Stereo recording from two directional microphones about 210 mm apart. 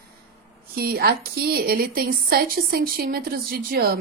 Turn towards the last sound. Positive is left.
turn(degrees=-45)  # may be behind; listen again after turning